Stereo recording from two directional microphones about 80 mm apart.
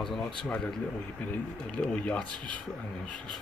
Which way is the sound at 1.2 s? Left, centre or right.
Left.